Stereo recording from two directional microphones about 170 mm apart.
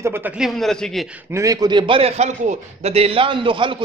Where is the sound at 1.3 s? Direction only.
20° right (ahead or behind).